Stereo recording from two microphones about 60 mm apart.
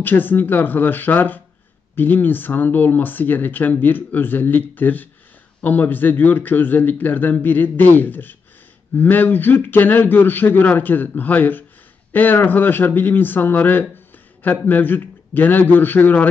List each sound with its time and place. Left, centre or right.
0.0 s speech: left